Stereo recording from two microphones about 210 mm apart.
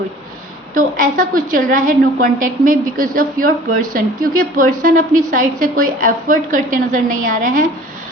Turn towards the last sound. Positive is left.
turn(degrees=-40)  # may be behind; listen again after turning